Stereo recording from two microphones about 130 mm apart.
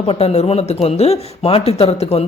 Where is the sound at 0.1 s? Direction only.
50° left (ahead or behind).